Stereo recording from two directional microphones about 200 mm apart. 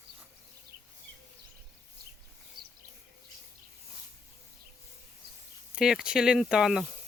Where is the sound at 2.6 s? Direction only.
20° right (ahead or behind).